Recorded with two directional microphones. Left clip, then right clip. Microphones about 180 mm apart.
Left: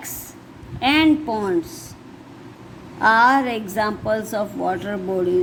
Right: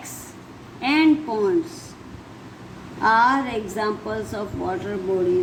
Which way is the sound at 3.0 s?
40° left (ahead or behind).